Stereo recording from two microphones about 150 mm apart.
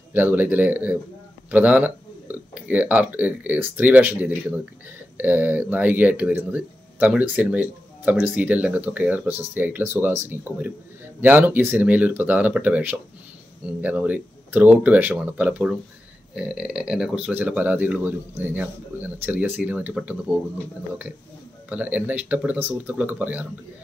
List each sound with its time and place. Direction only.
0.1 s speech: 10° right (ahead or behind)
21.6 s speech: 10° right (ahead or behind)